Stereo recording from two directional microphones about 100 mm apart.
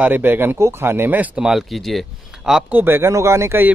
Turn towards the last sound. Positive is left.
turn(degrees=-25)  # may be behind; listen again after turning